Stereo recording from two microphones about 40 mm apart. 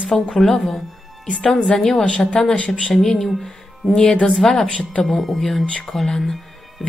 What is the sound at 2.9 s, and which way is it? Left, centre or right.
Speech, centre.